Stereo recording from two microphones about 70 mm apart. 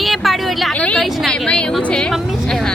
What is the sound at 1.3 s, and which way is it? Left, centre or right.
Speech, centre.